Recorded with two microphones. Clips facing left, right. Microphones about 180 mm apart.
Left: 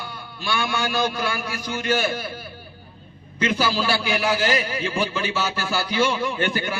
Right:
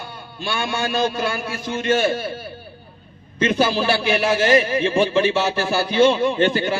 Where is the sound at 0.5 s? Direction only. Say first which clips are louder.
Right 1 dB; 25° right (ahead or behind).